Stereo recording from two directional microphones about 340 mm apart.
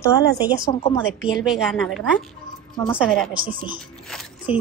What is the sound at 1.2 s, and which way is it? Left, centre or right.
A woman's voice, centre.